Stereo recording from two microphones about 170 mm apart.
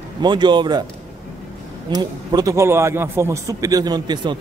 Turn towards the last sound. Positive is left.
turn(degrees=-25)  # may be behind; listen again after turning